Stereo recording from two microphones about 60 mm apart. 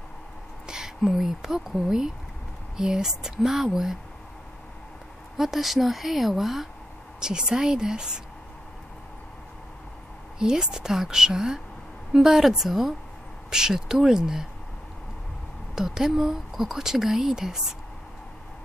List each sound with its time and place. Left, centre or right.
0.7 s speech: centre
5.4 s a woman's voice: centre
10.4 s a woman's voice: centre
15.7 s speech: centre